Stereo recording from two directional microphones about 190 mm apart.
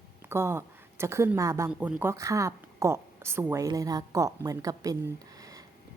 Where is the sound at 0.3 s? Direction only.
15° right (ahead or behind).